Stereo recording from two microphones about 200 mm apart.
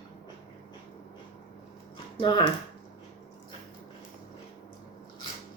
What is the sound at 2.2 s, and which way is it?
Speech, 20° left (ahead or behind).